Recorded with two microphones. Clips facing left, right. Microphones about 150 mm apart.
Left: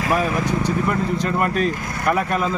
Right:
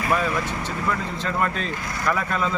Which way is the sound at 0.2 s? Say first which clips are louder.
Left 5 dB; 15° left (ahead or behind).